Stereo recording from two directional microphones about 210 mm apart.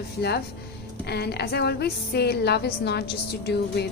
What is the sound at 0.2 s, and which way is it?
A woman's voice, 50° left (ahead or behind).